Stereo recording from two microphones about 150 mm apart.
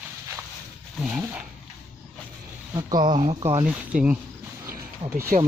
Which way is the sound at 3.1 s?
40° right (ahead or behind).